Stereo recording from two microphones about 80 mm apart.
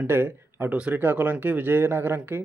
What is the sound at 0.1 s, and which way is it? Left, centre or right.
Speech, right.